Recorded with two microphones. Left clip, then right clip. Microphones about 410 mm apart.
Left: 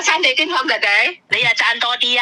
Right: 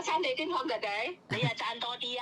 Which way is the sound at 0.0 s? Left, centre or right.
Left.